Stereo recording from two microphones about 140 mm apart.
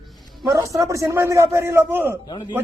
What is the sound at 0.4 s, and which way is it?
A man's voice, 20° right (ahead or behind).